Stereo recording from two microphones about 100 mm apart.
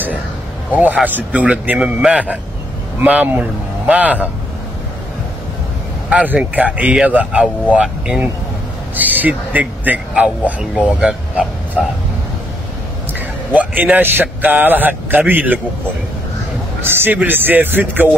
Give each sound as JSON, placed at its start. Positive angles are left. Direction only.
{"t": 0.7, "sound": "a man's voice", "side_deg": -15}
{"t": 6.0, "sound": "a man's voice", "side_deg": -15}
{"t": 13.5, "sound": "a man's voice", "side_deg": -15}
{"t": 16.8, "sound": "speech", "side_deg": -20}